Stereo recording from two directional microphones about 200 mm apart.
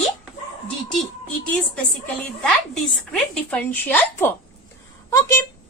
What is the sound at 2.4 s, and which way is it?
A woman's voice, 5° left (ahead or behind).